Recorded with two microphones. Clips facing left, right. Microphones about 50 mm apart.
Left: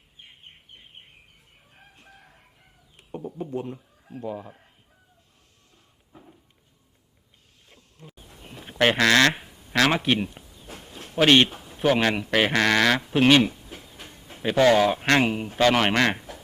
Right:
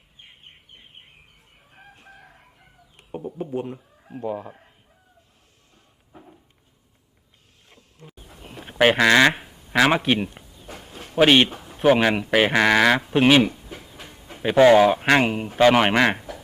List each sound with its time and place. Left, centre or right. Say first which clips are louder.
0.2 s bird: even; centre
2.1 s chicken: right 4 dB; centre
3.1 s a sound: right 3 dB; centre
3.5 s speech: right 3 dB; centre
3.8 s a sound: right 3 dB; right
4.2 s speech: right 4 dB; centre
6.1 s a sound: right 3 dB; centre
7.7 s goat: right 1 dB; centre
10.7 s speech: right 2 dB; centre